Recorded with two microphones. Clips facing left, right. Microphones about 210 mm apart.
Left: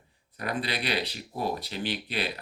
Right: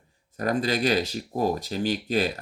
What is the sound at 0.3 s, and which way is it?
Speech, 45° right (ahead or behind).